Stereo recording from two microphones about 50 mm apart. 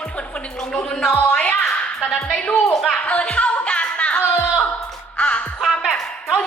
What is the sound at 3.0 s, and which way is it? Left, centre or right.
Music, left.